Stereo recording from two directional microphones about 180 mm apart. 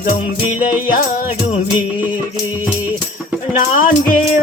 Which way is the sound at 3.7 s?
50° left (ahead or behind).